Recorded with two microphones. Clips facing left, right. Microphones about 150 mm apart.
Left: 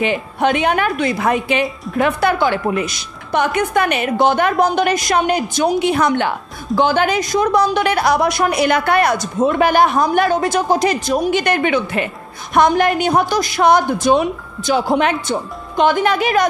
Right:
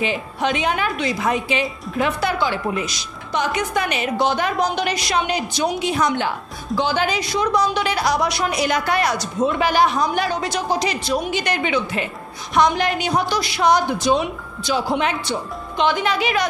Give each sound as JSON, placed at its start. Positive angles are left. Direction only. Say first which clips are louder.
{"t": 0.0, "sound": "a woman's voice", "louder": "left 5 dB", "side_deg": 55}